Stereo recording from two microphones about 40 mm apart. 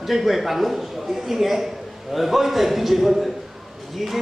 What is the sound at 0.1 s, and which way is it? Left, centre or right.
A man's voice, centre.